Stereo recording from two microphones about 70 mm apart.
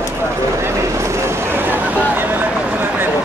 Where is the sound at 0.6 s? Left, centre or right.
Right.